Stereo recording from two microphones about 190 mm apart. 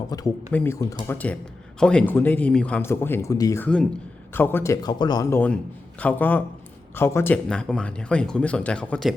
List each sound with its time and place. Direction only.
0.1 s speech: 20° left (ahead or behind); by 9.1 s 5° left (ahead or behind)